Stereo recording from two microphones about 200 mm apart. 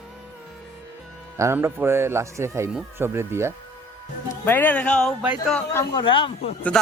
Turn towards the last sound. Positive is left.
turn(degrees=25)  # may be behind; listen again after turning